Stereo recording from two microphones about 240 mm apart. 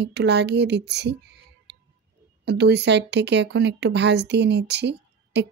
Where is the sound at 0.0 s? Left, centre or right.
Right.